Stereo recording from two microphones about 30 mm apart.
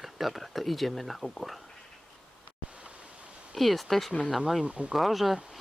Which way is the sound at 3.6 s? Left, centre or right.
Centre.